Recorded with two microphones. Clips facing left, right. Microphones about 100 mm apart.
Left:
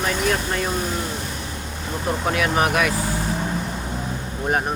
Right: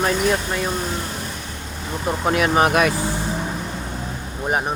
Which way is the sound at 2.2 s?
25° right (ahead or behind).